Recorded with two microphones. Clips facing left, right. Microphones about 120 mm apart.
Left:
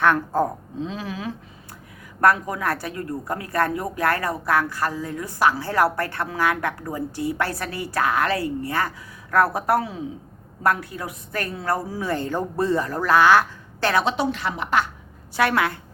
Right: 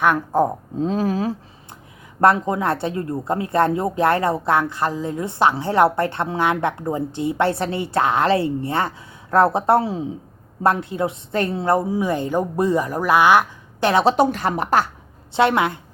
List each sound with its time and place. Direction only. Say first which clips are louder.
0.0 s a woman's voice: right 2 dB; 15° right (ahead or behind)
0.8 s speech: right 10 dB; 45° right (ahead or behind)
2.2 s a woman's voice: right 3 dB; 25° right (ahead or behind)
14.0 s a woman's voice: right 7 dB; 45° right (ahead or behind)
15.4 s a woman's voice: right 4 dB; 20° right (ahead or behind)